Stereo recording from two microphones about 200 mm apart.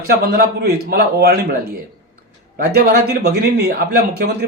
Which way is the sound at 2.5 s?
50° right (ahead or behind).